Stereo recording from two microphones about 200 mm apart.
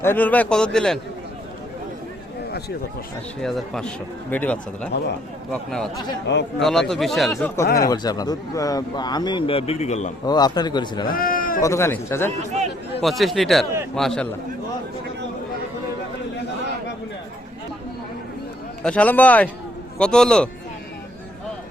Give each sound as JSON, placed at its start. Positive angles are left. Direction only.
{"t": 0.0, "sound": "speech", "side_deg": 10}
{"t": 3.4, "sound": "speech", "side_deg": 0}
{"t": 7.8, "sound": "speech", "side_deg": 20}
{"t": 10.2, "sound": "speech", "side_deg": 20}
{"t": 11.1, "sound": "a man's voice", "side_deg": 45}
{"t": 11.6, "sound": "speech", "side_deg": 15}
{"t": 13.0, "sound": "speech", "side_deg": 0}
{"t": 18.8, "sound": "speech", "side_deg": 5}